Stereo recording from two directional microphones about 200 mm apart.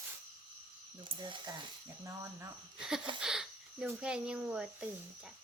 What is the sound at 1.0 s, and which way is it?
Speech, 25° right (ahead or behind).